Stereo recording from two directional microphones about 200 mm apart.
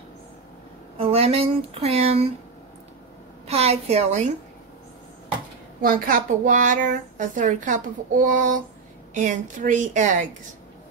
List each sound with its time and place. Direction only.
0.9 s speech: 30° right (ahead or behind)
3.4 s a woman's voice: 30° right (ahead or behind)
5.8 s a woman's voice: 45° right (ahead or behind)